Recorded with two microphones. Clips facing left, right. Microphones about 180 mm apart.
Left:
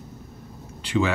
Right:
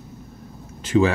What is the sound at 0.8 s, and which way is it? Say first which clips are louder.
Speech: right 5 dB; 45° right (ahead or behind).